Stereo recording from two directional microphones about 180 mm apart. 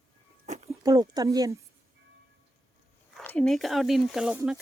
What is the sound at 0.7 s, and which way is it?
Speech, 20° right (ahead or behind).